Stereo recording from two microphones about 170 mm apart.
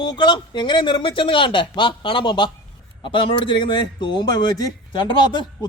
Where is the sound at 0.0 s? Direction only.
25° left (ahead or behind).